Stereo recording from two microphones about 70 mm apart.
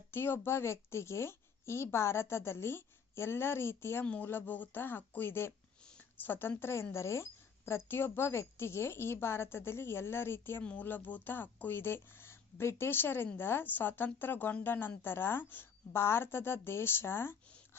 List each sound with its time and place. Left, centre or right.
0.1 s speech: left
4.0 s speech: left
6.6 s speech: left
10.6 s speech: centre